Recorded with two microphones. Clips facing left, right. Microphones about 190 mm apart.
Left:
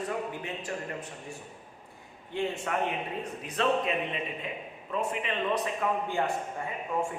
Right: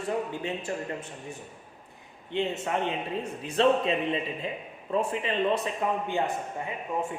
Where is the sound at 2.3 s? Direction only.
20° right (ahead or behind).